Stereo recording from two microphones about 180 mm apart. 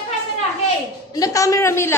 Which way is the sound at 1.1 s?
20° left (ahead or behind).